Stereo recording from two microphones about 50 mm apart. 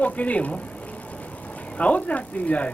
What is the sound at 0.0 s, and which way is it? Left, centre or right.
Speech, left.